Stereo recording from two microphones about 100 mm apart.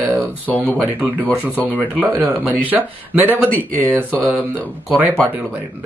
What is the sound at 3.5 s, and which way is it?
Speech, 20° left (ahead or behind).